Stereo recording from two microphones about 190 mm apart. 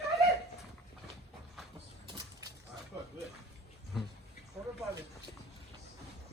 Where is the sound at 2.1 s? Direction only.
20° right (ahead or behind).